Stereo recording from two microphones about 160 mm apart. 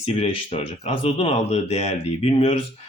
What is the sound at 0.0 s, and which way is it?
Speech, 40° left (ahead or behind).